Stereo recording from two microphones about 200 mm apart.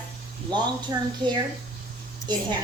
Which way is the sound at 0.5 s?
20° right (ahead or behind).